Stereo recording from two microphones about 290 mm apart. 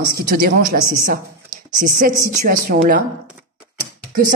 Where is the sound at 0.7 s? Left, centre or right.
Right.